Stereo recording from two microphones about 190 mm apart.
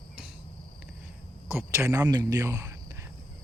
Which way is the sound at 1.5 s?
15° right (ahead or behind).